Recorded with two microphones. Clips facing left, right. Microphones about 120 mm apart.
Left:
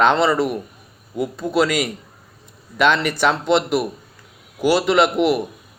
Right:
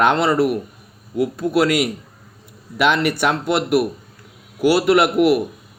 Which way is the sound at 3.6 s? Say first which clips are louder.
Right 3 dB; 60° right (ahead or behind).